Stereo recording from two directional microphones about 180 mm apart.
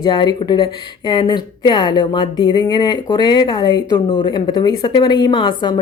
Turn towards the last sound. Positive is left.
turn(degrees=25)  # may be behind; listen again after turning